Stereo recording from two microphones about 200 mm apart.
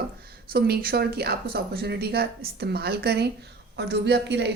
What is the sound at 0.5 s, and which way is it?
A woman's voice, 50° right (ahead or behind).